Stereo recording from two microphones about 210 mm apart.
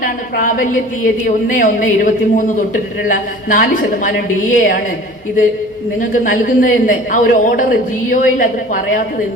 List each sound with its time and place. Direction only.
1.5 s a man's voice: 40° left (ahead or behind)
6.0 s a man's voice: 40° left (ahead or behind)